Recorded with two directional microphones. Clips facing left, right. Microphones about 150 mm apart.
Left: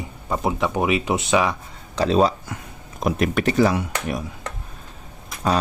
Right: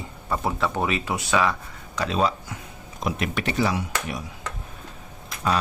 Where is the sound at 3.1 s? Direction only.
45° left (ahead or behind).